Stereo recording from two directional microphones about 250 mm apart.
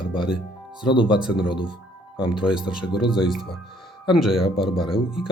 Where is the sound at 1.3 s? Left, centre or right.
Centre.